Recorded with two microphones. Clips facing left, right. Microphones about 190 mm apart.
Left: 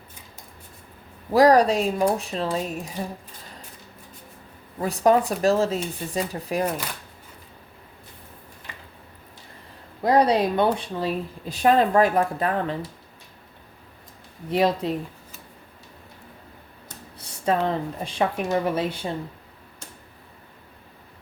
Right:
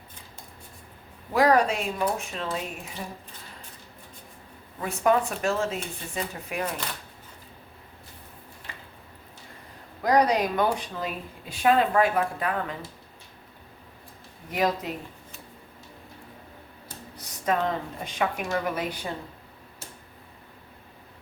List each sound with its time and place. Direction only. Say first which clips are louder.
1.3 s speech: left 5 dB; 35° left (ahead or behind)
4.8 s speech: left 4 dB; 35° left (ahead or behind)
10.0 s speech: left 3 dB; 30° left (ahead or behind)
14.5 s speech: left 5 dB; 30° left (ahead or behind)
17.2 s a sound: left 3 dB; 30° left (ahead or behind)
18.0 s a woman's voice: left 3 dB; 30° left (ahead or behind)